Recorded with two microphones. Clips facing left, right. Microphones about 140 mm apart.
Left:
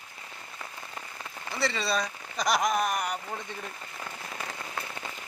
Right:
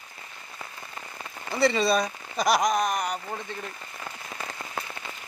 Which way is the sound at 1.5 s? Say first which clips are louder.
Right 7 dB; 15° right (ahead or behind).